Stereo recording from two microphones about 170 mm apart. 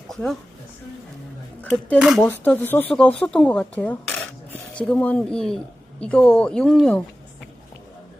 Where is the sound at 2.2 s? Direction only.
10° left (ahead or behind).